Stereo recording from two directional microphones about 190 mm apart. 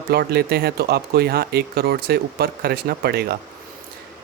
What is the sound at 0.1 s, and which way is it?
Speech, 55° right (ahead or behind).